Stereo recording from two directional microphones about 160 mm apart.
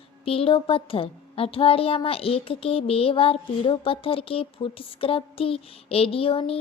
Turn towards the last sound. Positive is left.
turn(degrees=35)  # may be behind; listen again after turning